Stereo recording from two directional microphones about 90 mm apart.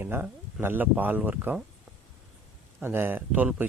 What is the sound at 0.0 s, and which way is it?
Speech, 25° right (ahead or behind).